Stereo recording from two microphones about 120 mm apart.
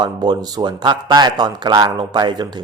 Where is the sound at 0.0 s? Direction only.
35° right (ahead or behind).